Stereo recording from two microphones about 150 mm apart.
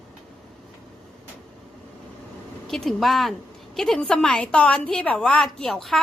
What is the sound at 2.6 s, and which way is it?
A woman's voice, centre (ahead or behind).